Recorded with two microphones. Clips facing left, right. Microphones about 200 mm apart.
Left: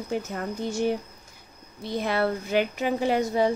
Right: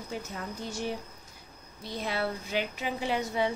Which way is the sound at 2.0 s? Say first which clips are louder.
Left 6 dB; 55° left (ahead or behind).